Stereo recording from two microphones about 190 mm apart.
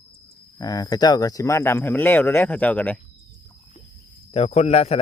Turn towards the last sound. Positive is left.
turn(degrees=35)  # may be behind; listen again after turning